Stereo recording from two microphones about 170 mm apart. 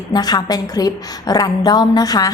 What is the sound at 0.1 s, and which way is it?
A woman's voice, 25° left (ahead or behind).